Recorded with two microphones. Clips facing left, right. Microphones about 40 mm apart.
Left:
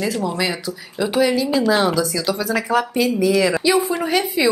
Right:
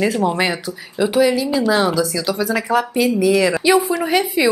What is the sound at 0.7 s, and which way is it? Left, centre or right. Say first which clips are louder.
A woman's voice: right 3 dB; centre.